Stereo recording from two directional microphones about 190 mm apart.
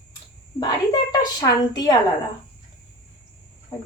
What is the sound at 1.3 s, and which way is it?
Speech, 20° left (ahead or behind).